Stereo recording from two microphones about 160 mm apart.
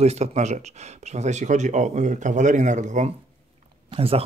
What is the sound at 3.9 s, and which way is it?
Speech, 35° right (ahead or behind).